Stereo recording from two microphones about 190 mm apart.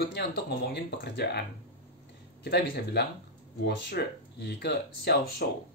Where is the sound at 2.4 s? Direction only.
60° left (ahead or behind).